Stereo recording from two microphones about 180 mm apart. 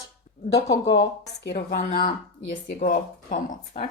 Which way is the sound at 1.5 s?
40° left (ahead or behind).